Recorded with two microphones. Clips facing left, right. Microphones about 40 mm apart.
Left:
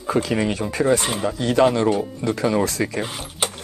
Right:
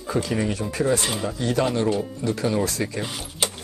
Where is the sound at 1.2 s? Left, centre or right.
Left.